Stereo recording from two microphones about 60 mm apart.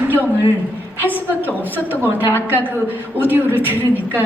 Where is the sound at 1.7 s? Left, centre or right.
Right.